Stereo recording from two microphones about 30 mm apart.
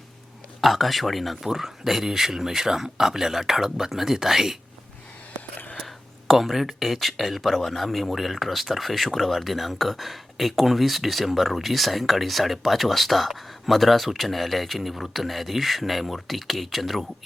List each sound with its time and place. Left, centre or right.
0.6 s speech: centre
1.5 s speech: centre
5.8 s speech: centre